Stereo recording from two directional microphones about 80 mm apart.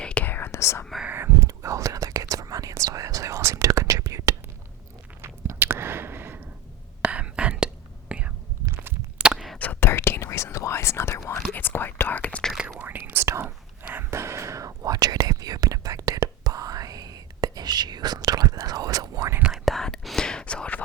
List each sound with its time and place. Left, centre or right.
0.0 s whispering: centre; by 0.9 s left
1.0 s a sound: right
1.4 s whispering: right
5.2 s a sound: right
7.0 s whispering: centre
8.6 s a sound: right
9.1 s a sound: centre
9.8 s whispering: left
11.5 s whispering: left
12.6 s whispering: right
14.1 s whispering: right
14.9 s whispering: right
19.6 s whispering: centre